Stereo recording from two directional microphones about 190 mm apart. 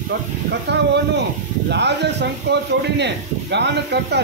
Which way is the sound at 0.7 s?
65° right (ahead or behind).